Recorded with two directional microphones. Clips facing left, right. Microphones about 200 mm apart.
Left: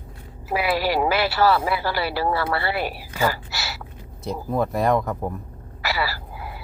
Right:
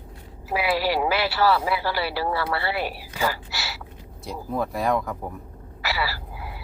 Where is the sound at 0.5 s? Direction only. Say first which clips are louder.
Left 1 dB; 50° left (ahead or behind).